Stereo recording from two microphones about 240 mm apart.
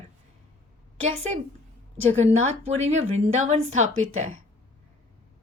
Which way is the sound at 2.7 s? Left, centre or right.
Right.